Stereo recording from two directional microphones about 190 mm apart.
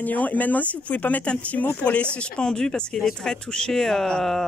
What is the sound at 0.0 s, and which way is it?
Speech, 10° left (ahead or behind).